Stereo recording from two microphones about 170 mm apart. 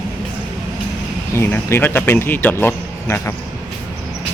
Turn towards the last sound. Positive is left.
turn(degrees=15)  # may be behind; listen again after turning